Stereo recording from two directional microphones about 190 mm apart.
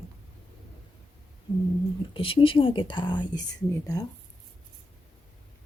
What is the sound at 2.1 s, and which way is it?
Speech, 30° left (ahead or behind).